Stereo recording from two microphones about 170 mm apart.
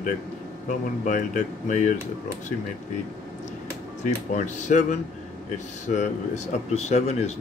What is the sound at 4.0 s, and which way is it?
Speech, 45° left (ahead or behind).